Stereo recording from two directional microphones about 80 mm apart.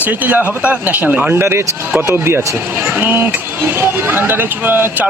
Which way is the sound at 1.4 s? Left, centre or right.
Right.